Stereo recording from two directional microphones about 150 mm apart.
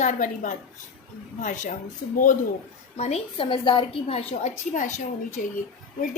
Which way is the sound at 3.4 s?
35° left (ahead or behind).